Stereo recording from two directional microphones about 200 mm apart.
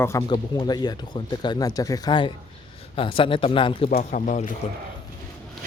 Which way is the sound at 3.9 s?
40° left (ahead or behind).